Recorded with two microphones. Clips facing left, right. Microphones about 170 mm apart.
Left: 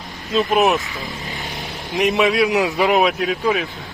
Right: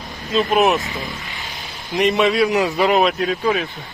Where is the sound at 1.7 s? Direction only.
Centre (ahead or behind).